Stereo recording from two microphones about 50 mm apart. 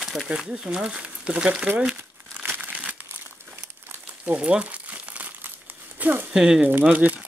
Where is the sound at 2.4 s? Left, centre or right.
Right.